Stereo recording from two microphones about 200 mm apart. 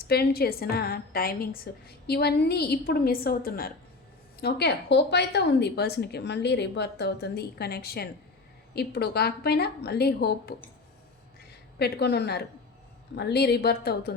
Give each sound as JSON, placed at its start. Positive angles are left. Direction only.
{"t": 0.0, "sound": "a woman's voice", "side_deg": 50}
{"t": 11.8, "sound": "a woman's voice", "side_deg": 55}